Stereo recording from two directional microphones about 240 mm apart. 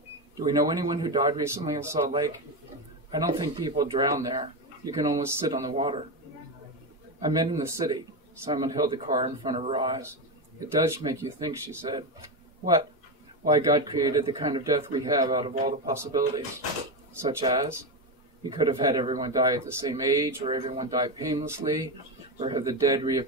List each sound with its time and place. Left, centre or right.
0.4 s speech: centre
3.2 s speech: centre
7.2 s speech: centre
13.5 s speech: centre
17.5 s speech: right